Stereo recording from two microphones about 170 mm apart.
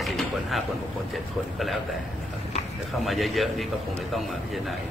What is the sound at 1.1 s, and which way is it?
Speech, centre (ahead or behind).